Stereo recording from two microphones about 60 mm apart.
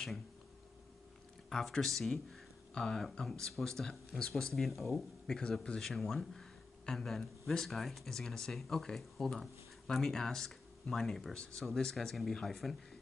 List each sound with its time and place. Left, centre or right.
1.5 s speech: centre